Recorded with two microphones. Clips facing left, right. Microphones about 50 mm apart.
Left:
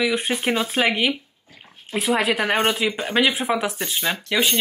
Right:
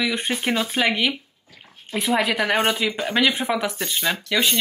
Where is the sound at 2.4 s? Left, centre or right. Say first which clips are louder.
Even; centre.